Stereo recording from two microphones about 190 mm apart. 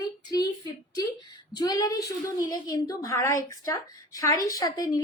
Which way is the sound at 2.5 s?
20° left (ahead or behind).